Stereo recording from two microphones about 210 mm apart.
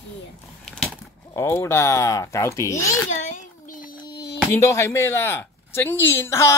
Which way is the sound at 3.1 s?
35° left (ahead or behind).